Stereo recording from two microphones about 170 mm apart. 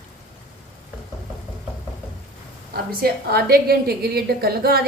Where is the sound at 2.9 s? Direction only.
60° right (ahead or behind).